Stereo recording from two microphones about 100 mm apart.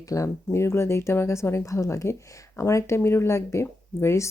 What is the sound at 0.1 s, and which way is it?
Speech, 30° left (ahead or behind).